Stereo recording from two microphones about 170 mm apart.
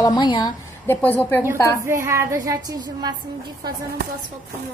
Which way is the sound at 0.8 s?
10° left (ahead or behind).